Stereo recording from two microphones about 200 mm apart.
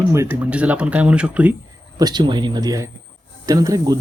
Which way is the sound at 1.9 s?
20° right (ahead or behind).